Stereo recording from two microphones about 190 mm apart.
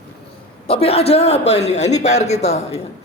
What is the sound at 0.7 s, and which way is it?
A man's voice, 30° left (ahead or behind).